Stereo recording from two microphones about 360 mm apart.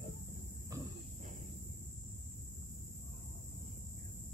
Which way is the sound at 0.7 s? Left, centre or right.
Centre.